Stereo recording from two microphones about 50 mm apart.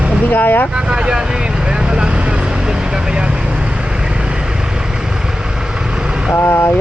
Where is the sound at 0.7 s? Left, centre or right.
Centre.